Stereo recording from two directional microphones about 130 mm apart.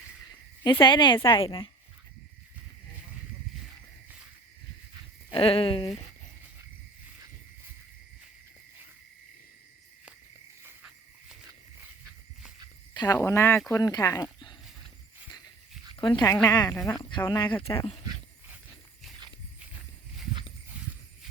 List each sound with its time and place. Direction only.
0.6 s speech: 35° left (ahead or behind)
5.3 s speech: 45° left (ahead or behind)
12.9 s a sound: 35° left (ahead or behind)
13.1 s speech: 20° left (ahead or behind)
16.0 s speech: 40° left (ahead or behind)
16.2 s speech: 25° left (ahead or behind)
17.0 s speech: 35° left (ahead or behind)
20.7 s a sound: 10° right (ahead or behind)